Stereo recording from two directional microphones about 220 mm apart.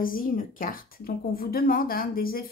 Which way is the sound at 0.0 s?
40° left (ahead or behind).